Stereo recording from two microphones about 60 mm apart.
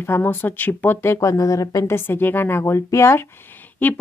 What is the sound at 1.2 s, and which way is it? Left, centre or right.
Speech, left.